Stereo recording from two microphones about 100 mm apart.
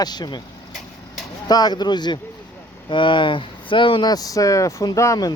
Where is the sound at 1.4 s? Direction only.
45° left (ahead or behind).